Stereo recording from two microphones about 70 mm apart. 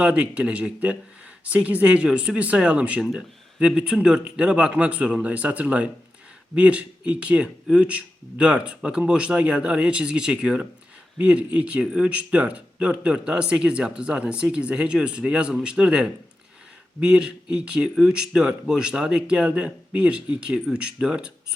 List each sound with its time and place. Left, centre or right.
0.0 s speech: centre